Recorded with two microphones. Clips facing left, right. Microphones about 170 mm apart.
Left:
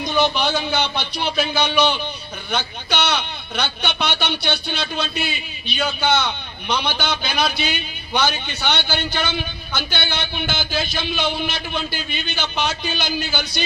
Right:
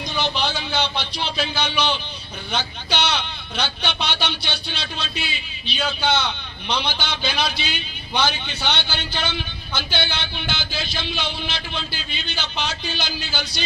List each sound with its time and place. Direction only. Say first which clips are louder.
0.0 s a man's voice: left 5 dB; 50° left (ahead or behind)